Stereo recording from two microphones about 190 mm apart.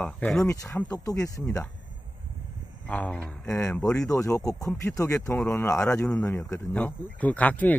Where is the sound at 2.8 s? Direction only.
5° left (ahead or behind).